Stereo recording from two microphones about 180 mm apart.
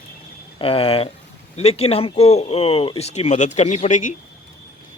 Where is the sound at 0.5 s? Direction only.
30° left (ahead or behind).